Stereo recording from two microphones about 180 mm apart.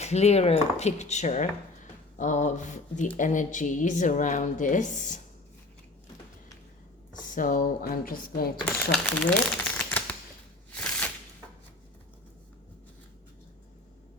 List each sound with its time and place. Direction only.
0.0 s a woman's voice: 35° left (ahead or behind)
7.1 s a woman's voice: 45° left (ahead or behind)
8.5 s speech: 5° left (ahead or behind)
9.7 s typewriter: 10° left (ahead or behind)
10.7 s a sound: 5° left (ahead or behind)